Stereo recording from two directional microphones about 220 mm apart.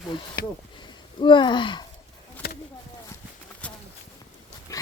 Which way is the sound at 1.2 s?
20° left (ahead or behind).